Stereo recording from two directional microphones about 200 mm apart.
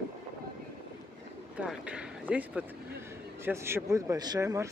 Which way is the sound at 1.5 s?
5° right (ahead or behind).